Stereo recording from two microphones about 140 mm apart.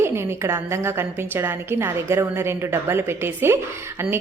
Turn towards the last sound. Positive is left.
turn(degrees=-15)  # may be behind; listen again after turning